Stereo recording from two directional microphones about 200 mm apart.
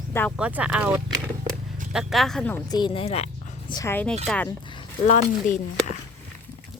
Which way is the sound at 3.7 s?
10° left (ahead or behind).